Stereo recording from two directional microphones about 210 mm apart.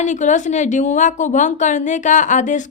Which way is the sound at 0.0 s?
35° left (ahead or behind).